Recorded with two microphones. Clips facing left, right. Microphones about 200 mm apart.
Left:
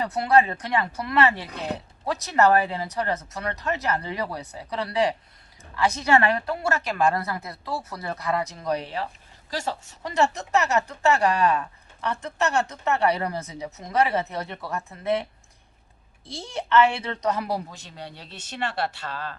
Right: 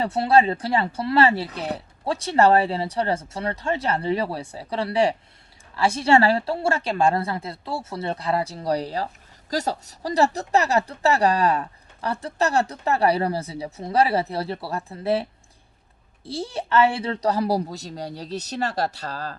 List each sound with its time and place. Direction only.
0.0 s a woman's voice: 30° right (ahead or behind)